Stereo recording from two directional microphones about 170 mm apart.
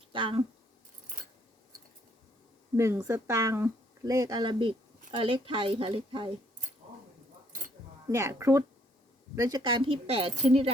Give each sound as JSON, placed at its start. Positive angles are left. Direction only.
{"t": 0.1, "sound": "speech", "side_deg": -30}
{"t": 2.7, "sound": "a woman's voice", "side_deg": -15}
{"t": 8.0, "sound": "a woman's voice", "side_deg": -15}